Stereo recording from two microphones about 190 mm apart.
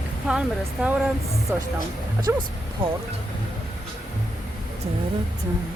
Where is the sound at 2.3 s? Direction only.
15° right (ahead or behind).